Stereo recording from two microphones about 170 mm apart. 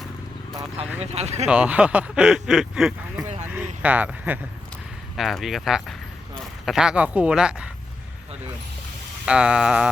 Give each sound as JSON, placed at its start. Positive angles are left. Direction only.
{"t": 0.9, "sound": "speech", "side_deg": -40}
{"t": 1.5, "sound": "speech", "side_deg": -5}
{"t": 3.4, "sound": "a sound", "side_deg": -10}
{"t": 3.8, "sound": "speech", "side_deg": -10}
{"t": 9.2, "sound": "speech", "side_deg": -5}